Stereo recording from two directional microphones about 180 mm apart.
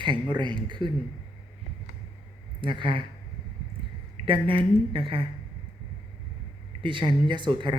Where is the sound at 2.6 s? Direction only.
25° right (ahead or behind).